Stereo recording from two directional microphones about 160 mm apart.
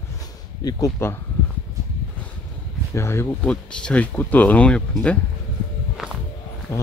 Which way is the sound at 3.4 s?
5° left (ahead or behind).